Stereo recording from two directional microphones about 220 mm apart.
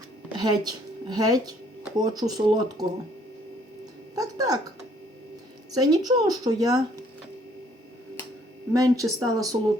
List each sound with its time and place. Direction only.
0.3 s a woman's voice: 20° right (ahead or behind)
4.1 s speech: 15° right (ahead or behind)
5.7 s a woman's voice: 15° right (ahead or behind)
8.7 s a woman's voice: 15° right (ahead or behind)